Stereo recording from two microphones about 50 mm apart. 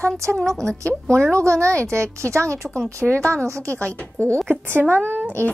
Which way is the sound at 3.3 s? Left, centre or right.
Right.